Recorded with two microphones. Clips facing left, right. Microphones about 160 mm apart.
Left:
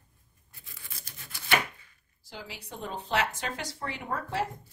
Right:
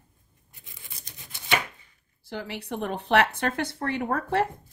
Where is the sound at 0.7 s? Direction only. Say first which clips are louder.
Right 1 dB; 20° right (ahead or behind).